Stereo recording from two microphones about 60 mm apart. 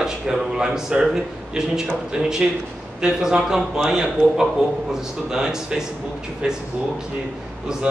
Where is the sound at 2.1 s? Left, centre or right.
Centre.